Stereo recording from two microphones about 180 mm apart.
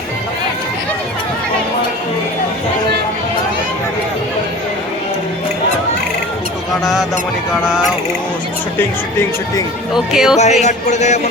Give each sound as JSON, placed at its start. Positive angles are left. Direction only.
{"t": 9.9, "sound": "speech", "side_deg": -5}
{"t": 10.3, "sound": "speech", "side_deg": 40}